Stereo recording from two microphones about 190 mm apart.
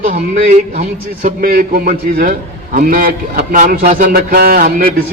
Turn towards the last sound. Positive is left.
turn(degrees=-50)  # may be behind; listen again after turning